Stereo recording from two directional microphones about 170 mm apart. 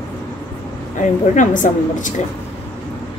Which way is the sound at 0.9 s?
45° left (ahead or behind).